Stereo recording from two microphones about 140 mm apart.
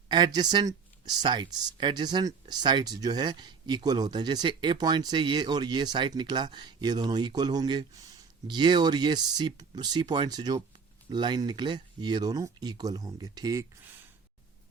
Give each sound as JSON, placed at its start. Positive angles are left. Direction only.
{"t": 0.3, "sound": "speech", "side_deg": -30}